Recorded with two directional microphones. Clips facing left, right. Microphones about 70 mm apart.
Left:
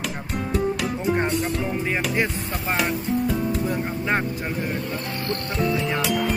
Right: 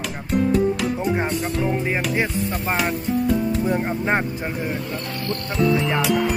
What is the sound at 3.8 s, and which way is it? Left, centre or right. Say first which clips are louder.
Speech: right 2 dB; right.